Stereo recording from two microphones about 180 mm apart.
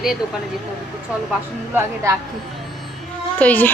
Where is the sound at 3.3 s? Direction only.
10° left (ahead or behind).